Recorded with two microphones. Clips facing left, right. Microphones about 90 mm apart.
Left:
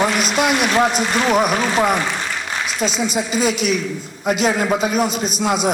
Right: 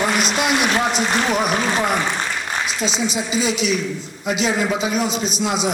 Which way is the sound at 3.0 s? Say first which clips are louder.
Left 3 dB; 50° left (ahead or behind).